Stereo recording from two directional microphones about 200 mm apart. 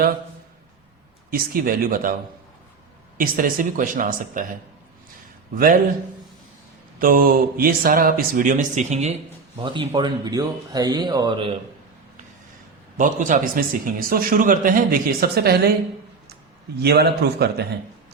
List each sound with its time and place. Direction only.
1.3 s a man's voice: 45° right (ahead or behind)
3.2 s a man's voice: 45° right (ahead or behind)
5.5 s a man's voice: 45° right (ahead or behind)
7.0 s a man's voice: 45° right (ahead or behind); by 11.5 s 25° right (ahead or behind)
13.0 s a man's voice: 40° right (ahead or behind)
16.7 s a man's voice: 55° right (ahead or behind)